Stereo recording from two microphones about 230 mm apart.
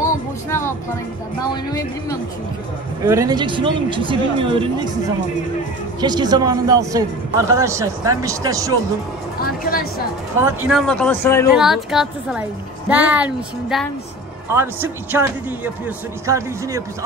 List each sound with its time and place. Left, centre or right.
0.5 s music: centre
1.5 s speech: centre
3.0 s speech: centre
5.9 s speech: centre
9.4 s speech: left
10.7 s speech: centre
11.5 s speech: centre